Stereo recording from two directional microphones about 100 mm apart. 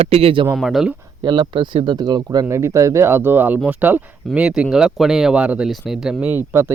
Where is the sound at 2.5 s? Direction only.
30° right (ahead or behind); by 6.3 s 10° right (ahead or behind).